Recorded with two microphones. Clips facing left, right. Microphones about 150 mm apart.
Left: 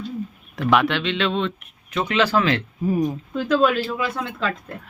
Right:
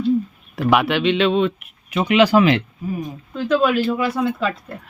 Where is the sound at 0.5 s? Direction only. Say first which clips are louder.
Right 2 dB; 10° right (ahead or behind).